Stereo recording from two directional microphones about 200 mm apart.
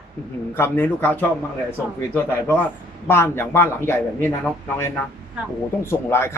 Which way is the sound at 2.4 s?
10° left (ahead or behind).